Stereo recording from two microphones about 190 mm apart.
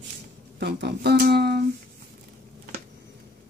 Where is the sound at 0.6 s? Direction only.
60° right (ahead or behind).